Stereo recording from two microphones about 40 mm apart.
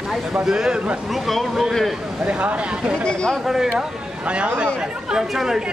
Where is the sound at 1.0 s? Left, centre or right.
Centre.